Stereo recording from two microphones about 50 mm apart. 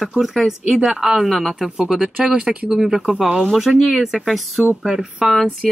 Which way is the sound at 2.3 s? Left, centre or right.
Right.